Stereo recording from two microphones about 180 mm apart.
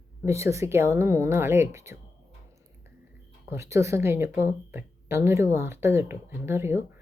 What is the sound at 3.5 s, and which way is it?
A woman's voice, 15° right (ahead or behind).